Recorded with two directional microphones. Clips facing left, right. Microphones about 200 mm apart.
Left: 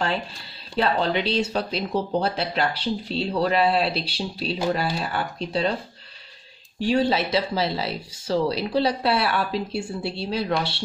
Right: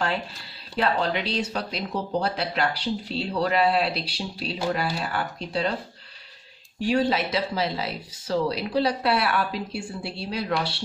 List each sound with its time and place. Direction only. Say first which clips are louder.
0.7 s speech: left 2 dB; 30° left (ahead or behind)
6.8 s speech: left 2 dB; 25° left (ahead or behind)